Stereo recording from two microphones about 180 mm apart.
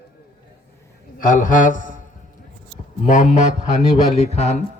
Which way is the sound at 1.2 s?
50° left (ahead or behind).